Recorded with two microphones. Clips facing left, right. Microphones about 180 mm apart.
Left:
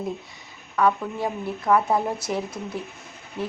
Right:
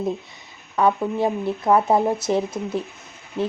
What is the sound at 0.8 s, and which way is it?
Speech, 25° right (ahead or behind).